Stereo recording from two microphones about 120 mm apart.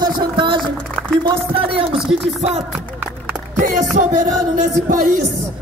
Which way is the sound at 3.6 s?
90° right.